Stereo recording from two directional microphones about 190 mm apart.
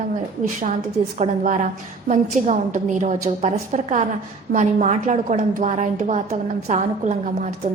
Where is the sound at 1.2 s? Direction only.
40° right (ahead or behind).